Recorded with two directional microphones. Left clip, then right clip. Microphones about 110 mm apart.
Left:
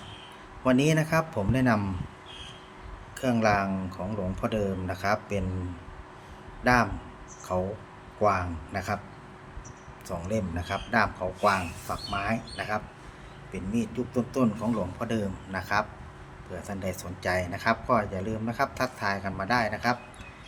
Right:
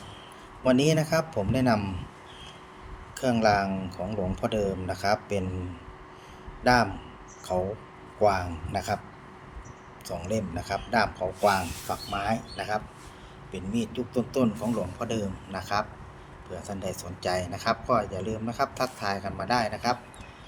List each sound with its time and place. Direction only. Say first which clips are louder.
0.6 s speech: right 1 dB; 15° right (ahead or behind)
3.2 s speech: right 2 dB; 15° right (ahead or behind)
6.6 s speech: right 1 dB; 15° right (ahead or behind)
8.2 s speech: right 1 dB; 20° right (ahead or behind)
10.1 s speech: even; 15° right (ahead or behind)